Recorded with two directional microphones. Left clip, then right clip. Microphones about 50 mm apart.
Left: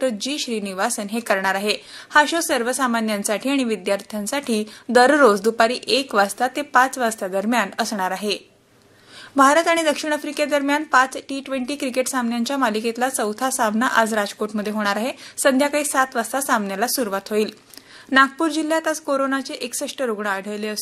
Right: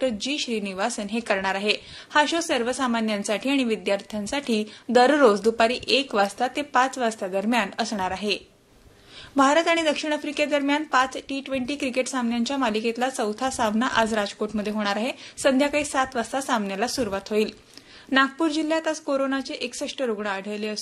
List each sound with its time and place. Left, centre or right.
0.0 s a woman's voice: left